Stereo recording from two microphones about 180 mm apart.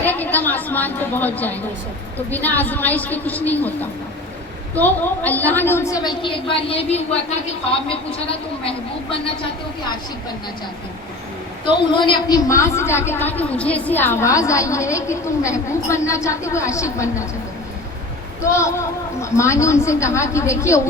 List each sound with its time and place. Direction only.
0.0 s a woman's voice: 10° left (ahead or behind); by 9.1 s 30° left (ahead or behind)
11.9 s a woman's voice: 25° left (ahead or behind)
18.5 s a woman's voice: 15° left (ahead or behind)